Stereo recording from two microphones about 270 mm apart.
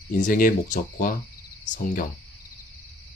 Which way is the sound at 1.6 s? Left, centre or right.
Left.